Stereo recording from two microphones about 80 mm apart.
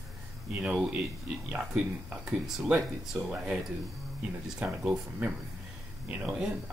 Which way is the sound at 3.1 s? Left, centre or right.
Centre.